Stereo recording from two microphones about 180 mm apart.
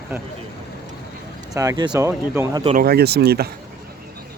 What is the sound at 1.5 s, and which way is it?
Speech, 20° right (ahead or behind).